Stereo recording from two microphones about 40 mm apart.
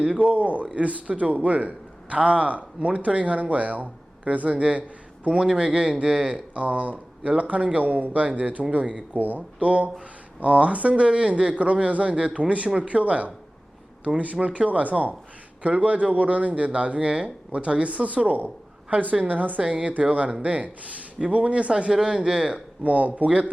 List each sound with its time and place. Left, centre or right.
0.0 s a man's voice: right
9.1 s speech: right
9.6 s speech: right
18.3 s a sound: right
19.3 s speech: right
19.6 s speech: right
21.7 s speech: right
22.8 s speech: right